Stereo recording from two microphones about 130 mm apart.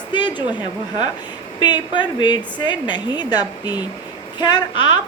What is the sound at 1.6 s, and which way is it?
A woman's voice, 35° left (ahead or behind).